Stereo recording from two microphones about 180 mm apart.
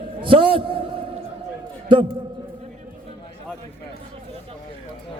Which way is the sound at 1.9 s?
30° right (ahead or behind).